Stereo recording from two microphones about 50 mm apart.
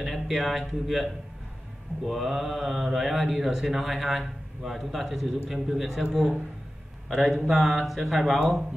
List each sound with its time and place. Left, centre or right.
0.0 s speech: centre
7.1 s a man's voice: centre